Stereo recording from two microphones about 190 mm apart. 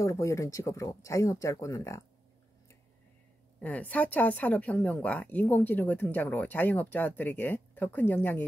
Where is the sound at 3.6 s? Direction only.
10° left (ahead or behind).